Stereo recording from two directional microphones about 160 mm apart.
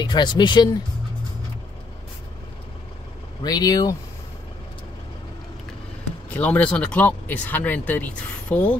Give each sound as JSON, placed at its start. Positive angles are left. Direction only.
{"t": 0.0, "sound": "speech", "side_deg": 30}
{"t": 3.4, "sound": "speech", "side_deg": 25}
{"t": 6.3, "sound": "speech", "side_deg": 10}